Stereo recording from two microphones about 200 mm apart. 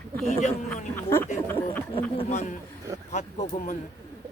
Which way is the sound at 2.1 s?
35° left (ahead or behind).